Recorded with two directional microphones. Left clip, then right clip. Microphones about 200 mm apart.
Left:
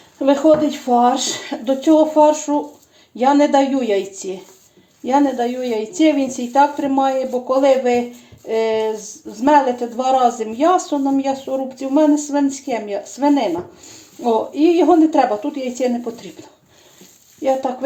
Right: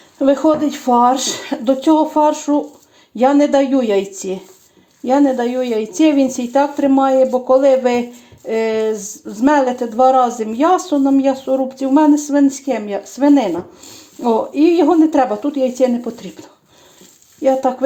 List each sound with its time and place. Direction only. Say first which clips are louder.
0.2 s speech: even; 35° right (ahead or behind)